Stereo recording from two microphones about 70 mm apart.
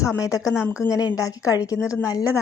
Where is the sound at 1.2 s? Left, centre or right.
Left.